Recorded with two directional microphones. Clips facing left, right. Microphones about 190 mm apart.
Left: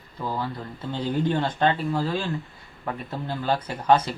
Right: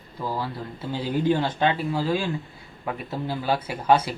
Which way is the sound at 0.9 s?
5° right (ahead or behind).